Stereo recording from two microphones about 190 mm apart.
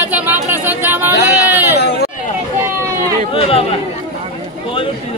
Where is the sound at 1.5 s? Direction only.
10° right (ahead or behind).